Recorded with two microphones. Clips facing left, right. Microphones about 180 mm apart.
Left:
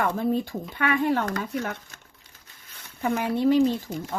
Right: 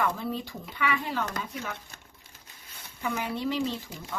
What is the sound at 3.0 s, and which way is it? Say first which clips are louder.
Speech: left 8 dB; 50° left (ahead or behind).